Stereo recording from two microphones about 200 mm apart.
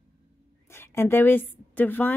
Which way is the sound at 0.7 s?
10° left (ahead or behind).